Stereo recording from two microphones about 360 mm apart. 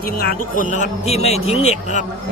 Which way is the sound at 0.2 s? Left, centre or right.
Left.